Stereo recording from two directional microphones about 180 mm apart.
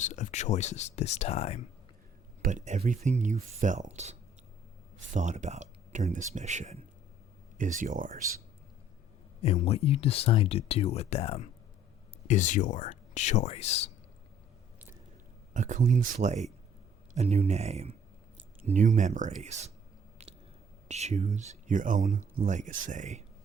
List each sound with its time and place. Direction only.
0.0 s speech: 40° left (ahead or behind)
2.4 s speech: 45° right (ahead or behind)
9.4 s speech: 35° left (ahead or behind)
12.3 s speech: 45° left (ahead or behind)
15.5 s speech: 45° right (ahead or behind)
20.8 s speech: 40° right (ahead or behind)